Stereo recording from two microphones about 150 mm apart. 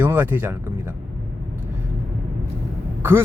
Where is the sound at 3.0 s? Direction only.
15° right (ahead or behind).